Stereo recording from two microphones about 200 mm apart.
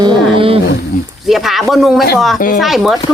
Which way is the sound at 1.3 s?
Centre (ahead or behind).